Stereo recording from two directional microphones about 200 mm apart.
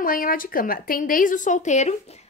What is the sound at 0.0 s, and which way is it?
A woman's voice, 45° left (ahead or behind).